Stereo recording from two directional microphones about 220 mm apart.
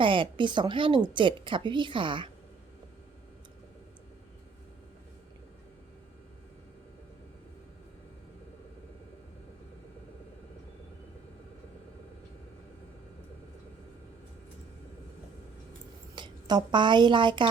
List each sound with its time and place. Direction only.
0.0 s a woman's voice: 25° right (ahead or behind)
16.1 s speech: 20° right (ahead or behind)